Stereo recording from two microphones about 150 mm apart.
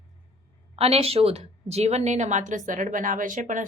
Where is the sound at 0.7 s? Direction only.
40° right (ahead or behind); by 3.6 s 60° right (ahead or behind).